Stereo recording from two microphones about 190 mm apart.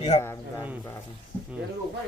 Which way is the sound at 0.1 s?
35° left (ahead or behind).